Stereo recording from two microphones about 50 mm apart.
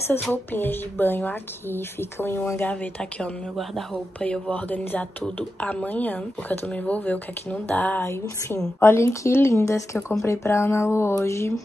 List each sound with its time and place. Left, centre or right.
0.1 s a woman's voice: left
2.6 s speech: left
3.9 s speech: left
8.0 s a woman's voice: left
8.8 s speech: left
9.5 s speech: left
10.2 s speech: left